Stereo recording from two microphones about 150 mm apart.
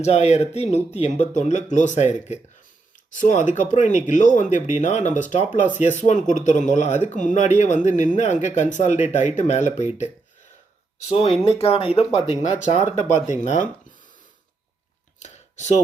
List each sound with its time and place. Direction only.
0.0 s speech: 45° left (ahead or behind)
11.1 s speech: 40° left (ahead or behind)
12.4 s speech: 55° left (ahead or behind)
15.2 s a sound: 50° left (ahead or behind)